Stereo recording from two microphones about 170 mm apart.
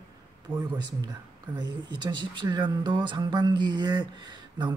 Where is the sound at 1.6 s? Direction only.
25° right (ahead or behind).